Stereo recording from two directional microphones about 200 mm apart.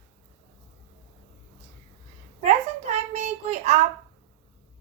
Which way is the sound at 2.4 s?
35° right (ahead or behind).